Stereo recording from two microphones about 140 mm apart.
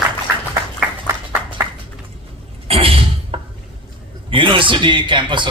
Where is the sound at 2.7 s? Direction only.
40° right (ahead or behind).